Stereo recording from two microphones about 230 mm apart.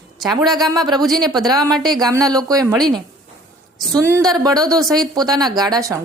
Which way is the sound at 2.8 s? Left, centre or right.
Centre.